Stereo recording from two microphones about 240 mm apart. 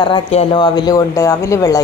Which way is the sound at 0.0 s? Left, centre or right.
Left.